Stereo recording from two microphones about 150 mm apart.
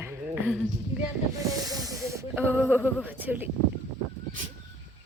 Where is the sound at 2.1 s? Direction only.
20° right (ahead or behind).